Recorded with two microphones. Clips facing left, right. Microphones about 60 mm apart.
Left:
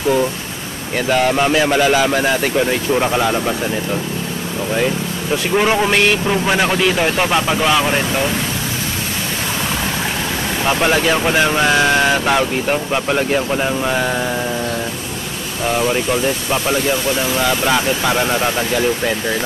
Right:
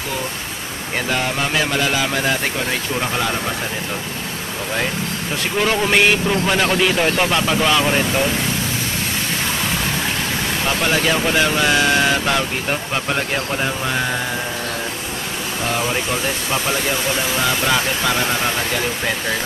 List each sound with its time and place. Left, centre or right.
1.6 s speech: centre
5.6 s speech: centre
5.9 s speech: centre
6.2 s speech: centre
10.6 s speech: centre
12.9 s speech: centre
17.6 s speech: centre